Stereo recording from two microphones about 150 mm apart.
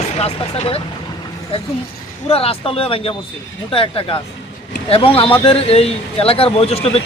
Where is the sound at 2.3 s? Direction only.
40° left (ahead or behind).